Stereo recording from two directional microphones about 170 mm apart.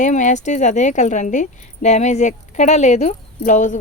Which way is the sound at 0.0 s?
45° left (ahead or behind).